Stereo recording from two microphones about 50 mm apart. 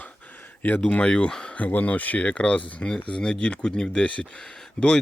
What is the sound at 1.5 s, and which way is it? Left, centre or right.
Speech, left.